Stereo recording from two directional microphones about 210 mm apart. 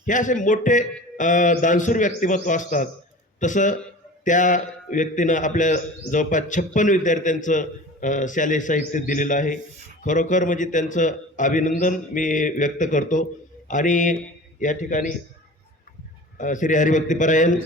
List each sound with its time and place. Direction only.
0.0 s a man's voice: 35° left (ahead or behind)
16.4 s a man's voice: 35° left (ahead or behind)